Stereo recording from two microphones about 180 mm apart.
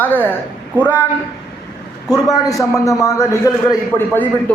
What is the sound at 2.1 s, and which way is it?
A man's voice, 20° left (ahead or behind).